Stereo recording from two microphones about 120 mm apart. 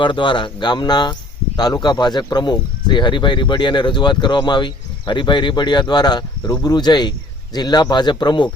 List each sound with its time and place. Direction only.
0.0 s speech: 40° left (ahead or behind)